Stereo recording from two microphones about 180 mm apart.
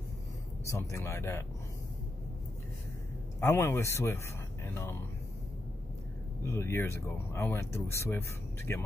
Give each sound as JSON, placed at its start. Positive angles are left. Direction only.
{"t": 0.7, "sound": "speech", "side_deg": 15}
{"t": 3.3, "sound": "speech", "side_deg": 15}
{"t": 6.4, "sound": "speech", "side_deg": 15}